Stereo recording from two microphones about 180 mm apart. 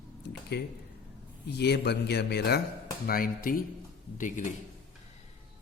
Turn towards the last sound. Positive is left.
turn(degrees=45)  # may be behind; listen again after turning